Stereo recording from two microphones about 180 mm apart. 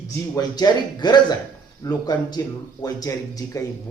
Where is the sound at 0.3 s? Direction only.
20° left (ahead or behind).